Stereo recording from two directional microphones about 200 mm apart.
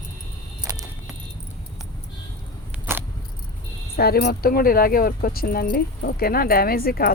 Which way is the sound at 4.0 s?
50° left (ahead or behind).